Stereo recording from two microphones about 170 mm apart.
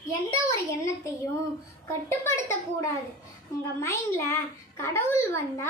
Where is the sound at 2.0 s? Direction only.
15° left (ahead or behind).